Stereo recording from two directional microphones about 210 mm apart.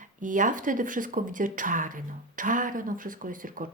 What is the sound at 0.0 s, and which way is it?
Speech, 40° right (ahead or behind).